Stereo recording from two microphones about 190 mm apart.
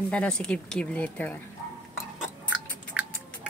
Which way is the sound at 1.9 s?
5° right (ahead or behind).